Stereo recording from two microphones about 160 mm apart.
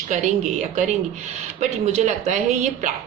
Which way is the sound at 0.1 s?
45° right (ahead or behind).